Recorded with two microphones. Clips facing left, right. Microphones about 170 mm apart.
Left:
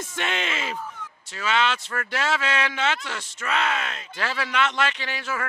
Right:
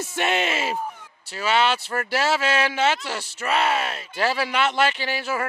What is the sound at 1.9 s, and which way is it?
Speech, 30° right (ahead or behind).